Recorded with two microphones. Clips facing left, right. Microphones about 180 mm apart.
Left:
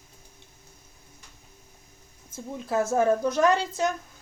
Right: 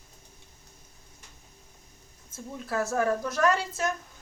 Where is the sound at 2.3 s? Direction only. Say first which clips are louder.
Left 4 dB; 20° left (ahead or behind).